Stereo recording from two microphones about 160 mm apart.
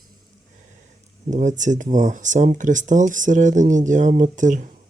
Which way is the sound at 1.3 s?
50° right (ahead or behind).